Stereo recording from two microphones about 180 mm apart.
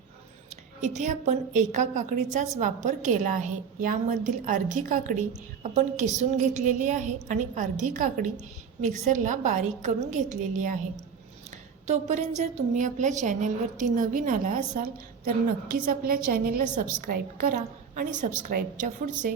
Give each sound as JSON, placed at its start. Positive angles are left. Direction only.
{"t": 0.5, "sound": "a woman's voice", "side_deg": -40}